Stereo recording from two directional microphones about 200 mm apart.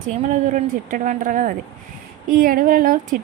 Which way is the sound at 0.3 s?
40° right (ahead or behind).